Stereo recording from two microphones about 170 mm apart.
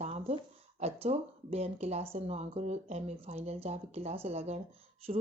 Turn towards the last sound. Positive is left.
turn(degrees=-40)  # may be behind; listen again after turning